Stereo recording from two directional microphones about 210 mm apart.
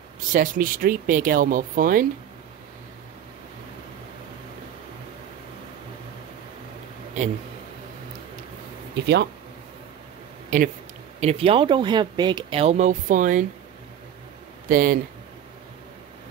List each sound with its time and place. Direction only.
0.3 s speech: 40° right (ahead or behind)
8.9 s speech: 55° right (ahead or behind)
10.5 s speech: 40° right (ahead or behind)
14.7 s speech: 40° right (ahead or behind)